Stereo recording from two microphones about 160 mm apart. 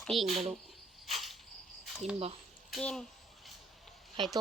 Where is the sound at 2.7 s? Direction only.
5° left (ahead or behind).